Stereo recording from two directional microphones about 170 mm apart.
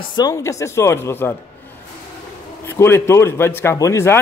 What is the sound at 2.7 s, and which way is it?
Speech, 15° left (ahead or behind).